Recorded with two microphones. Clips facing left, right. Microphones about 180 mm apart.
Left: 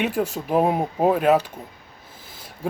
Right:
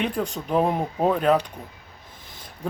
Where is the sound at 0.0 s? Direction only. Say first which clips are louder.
Left 3 dB; 5° left (ahead or behind).